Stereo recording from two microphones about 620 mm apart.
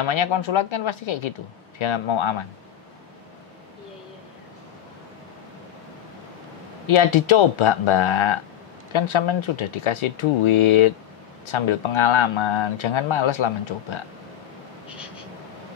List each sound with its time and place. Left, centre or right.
0.1 s speech: left
6.9 s speech: left